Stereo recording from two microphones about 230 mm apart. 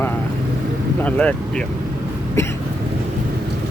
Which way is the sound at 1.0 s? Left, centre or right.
Centre.